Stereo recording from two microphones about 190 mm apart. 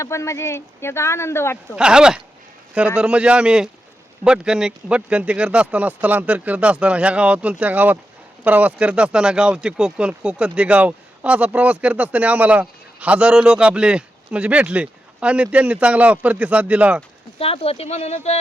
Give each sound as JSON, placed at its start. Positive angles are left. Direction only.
{"t": 0.0, "sound": "speech", "side_deg": 15}
{"t": 1.7, "sound": "a man's voice", "side_deg": -5}
{"t": 17.4, "sound": "speech", "side_deg": 30}